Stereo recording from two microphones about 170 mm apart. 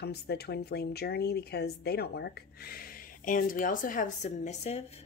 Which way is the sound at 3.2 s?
55° left (ahead or behind).